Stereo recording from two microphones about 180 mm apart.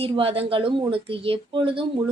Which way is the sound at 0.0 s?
30° right (ahead or behind).